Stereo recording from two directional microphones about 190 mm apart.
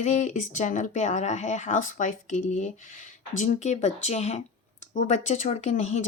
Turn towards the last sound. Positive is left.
turn(degrees=35)  # may be behind; listen again after turning